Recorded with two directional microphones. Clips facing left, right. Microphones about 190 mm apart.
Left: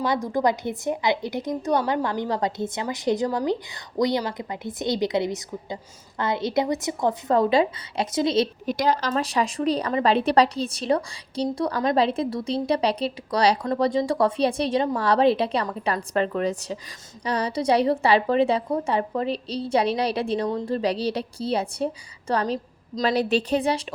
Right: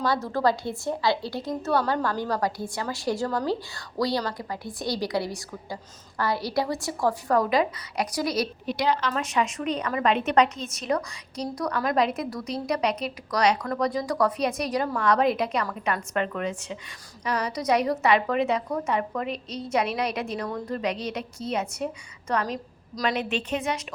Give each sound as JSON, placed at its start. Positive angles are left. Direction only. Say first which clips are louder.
{"t": 0.0, "sound": "a woman's voice", "louder": "left 1 dB", "side_deg": 15}
{"t": 8.6, "sound": "a woman's voice", "louder": "left 2 dB", "side_deg": 45}